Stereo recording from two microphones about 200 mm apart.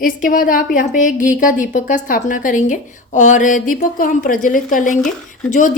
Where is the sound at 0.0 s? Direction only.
45° left (ahead or behind).